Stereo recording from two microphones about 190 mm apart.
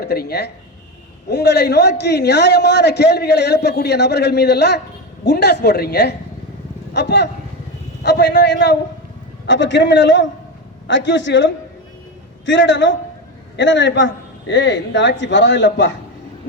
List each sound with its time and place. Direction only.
0.0 s a man's voice: 55° left (ahead or behind)